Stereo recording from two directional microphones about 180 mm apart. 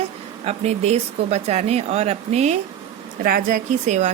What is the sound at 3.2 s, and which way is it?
Speech, 50° right (ahead or behind).